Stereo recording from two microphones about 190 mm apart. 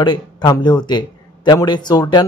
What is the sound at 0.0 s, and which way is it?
A man's voice, 20° left (ahead or behind).